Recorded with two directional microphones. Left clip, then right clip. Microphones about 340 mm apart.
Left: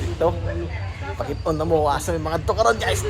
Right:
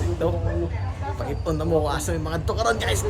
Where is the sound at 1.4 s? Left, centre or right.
Centre.